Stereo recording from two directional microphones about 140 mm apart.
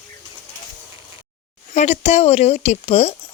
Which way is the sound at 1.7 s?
50° left (ahead or behind).